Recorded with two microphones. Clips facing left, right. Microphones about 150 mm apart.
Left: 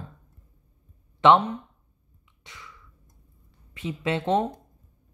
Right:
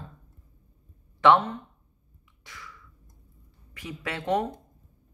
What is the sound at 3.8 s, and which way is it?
Speech, 20° left (ahead or behind).